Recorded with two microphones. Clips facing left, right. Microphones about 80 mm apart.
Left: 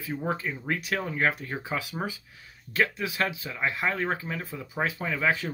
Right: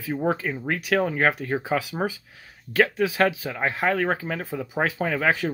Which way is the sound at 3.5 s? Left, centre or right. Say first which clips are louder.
Right 4 dB; right.